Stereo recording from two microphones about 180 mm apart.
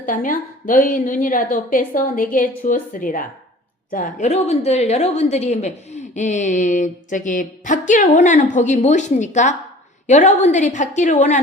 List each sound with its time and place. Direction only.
0.0 s a woman's voice: 50° left (ahead or behind)